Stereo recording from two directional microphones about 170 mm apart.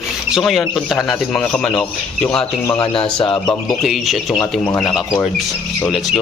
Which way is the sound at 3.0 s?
30° left (ahead or behind).